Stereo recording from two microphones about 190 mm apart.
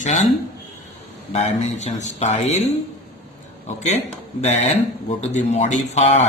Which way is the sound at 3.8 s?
35° left (ahead or behind).